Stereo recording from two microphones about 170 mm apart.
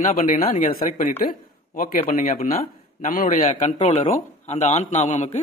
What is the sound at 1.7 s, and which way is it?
A man's voice, 55° left (ahead or behind).